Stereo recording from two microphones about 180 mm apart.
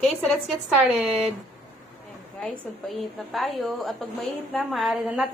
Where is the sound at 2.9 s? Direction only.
Centre (ahead or behind).